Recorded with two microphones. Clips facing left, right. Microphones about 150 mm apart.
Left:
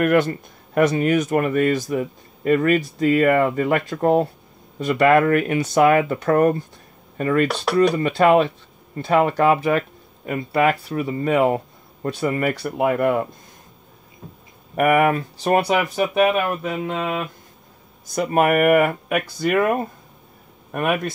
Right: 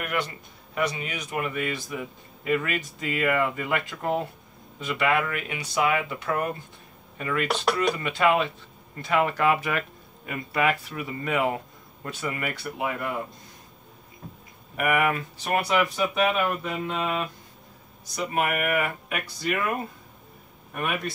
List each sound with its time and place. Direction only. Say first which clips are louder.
0.0 s speech: left 13 dB; 50° left (ahead or behind)
14.8 s speech: left 7 dB; 40° left (ahead or behind)